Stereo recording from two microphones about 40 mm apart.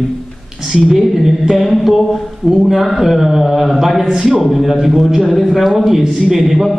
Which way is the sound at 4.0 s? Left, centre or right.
Centre.